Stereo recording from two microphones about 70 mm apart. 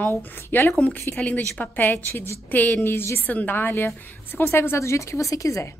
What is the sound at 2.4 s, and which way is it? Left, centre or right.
Speech, left.